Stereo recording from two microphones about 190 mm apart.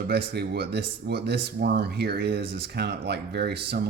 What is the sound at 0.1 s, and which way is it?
Speech, 60° right (ahead or behind).